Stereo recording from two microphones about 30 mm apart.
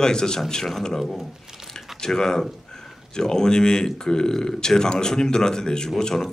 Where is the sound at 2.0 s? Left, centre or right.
Centre.